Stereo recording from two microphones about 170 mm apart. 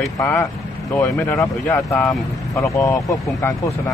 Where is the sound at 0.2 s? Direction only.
15° left (ahead or behind).